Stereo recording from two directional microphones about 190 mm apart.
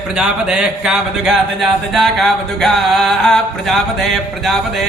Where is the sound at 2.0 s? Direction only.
Centre (ahead or behind).